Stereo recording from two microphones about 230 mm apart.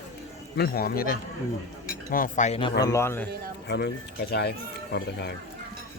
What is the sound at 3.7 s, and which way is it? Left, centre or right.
Speech, left.